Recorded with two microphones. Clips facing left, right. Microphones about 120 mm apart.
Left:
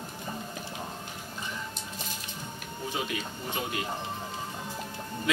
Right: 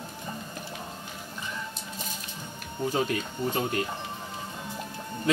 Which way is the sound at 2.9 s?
45° right (ahead or behind).